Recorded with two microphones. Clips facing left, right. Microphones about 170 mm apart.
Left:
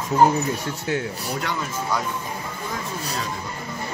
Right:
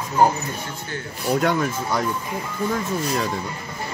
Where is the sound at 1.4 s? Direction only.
50° right (ahead or behind).